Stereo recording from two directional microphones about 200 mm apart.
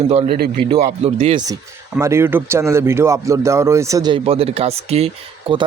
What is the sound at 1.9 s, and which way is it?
Speech, 15° right (ahead or behind).